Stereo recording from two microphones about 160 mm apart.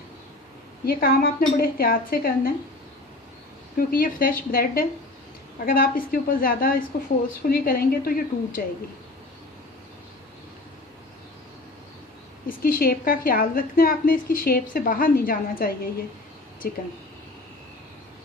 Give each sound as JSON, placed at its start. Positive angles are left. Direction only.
{"t": 0.9, "sound": "a woman's voice", "side_deg": 65}
{"t": 3.8, "sound": "a woman's voice", "side_deg": 60}
{"t": 12.5, "sound": "a woman's voice", "side_deg": 60}